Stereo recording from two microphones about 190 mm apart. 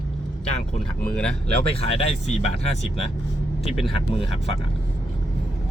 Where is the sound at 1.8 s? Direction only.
30° left (ahead or behind).